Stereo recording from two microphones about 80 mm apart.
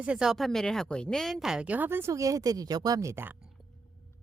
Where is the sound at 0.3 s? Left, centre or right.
Centre.